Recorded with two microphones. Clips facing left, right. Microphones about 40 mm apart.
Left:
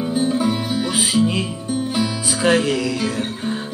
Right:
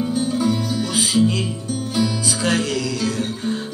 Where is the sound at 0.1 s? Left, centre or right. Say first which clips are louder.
Left 4 dB; centre.